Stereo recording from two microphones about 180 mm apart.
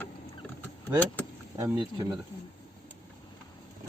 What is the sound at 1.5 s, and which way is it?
Speech, 15° right (ahead or behind).